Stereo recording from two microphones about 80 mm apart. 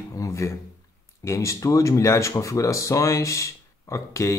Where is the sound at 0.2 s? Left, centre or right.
Left.